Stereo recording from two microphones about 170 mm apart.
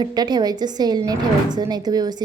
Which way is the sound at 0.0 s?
25° right (ahead or behind).